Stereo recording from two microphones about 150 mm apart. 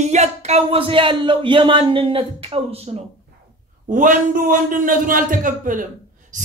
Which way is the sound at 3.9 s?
60° right (ahead or behind).